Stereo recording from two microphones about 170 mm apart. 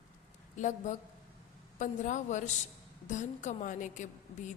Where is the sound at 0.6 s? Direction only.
45° left (ahead or behind).